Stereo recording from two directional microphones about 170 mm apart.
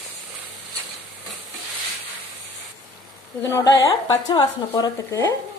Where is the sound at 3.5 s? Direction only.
20° left (ahead or behind).